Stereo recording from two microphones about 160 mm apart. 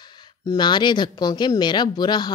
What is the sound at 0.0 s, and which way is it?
A woman's voice, 25° left (ahead or behind).